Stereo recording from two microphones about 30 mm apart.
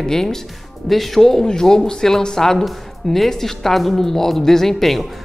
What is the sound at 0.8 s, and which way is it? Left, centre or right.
A woman's voice, centre.